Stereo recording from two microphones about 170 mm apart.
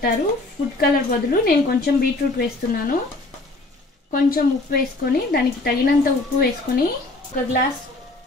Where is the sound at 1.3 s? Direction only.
60° left (ahead or behind).